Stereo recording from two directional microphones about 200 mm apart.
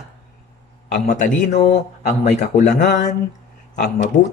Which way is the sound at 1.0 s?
40° left (ahead or behind).